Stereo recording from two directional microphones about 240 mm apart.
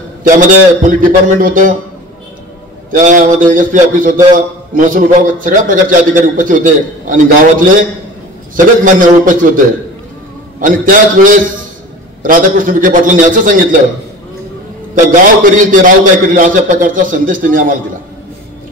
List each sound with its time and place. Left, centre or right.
0.2 s a man's voice: right
2.9 s a man's voice: right
8.5 s a man's voice: right
10.6 s a man's voice: right
15.0 s a man's voice: right